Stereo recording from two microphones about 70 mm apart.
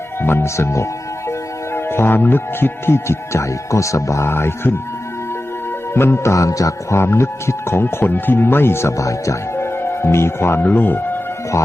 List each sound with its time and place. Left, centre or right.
0.2 s speech: left
5.9 s music: left
7.0 s speech: left
9.8 s speech: left